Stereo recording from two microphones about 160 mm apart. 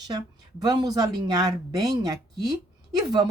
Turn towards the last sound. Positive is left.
turn(degrees=-25)  # may be behind; listen again after turning